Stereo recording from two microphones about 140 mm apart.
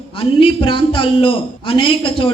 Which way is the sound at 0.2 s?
40° left (ahead or behind).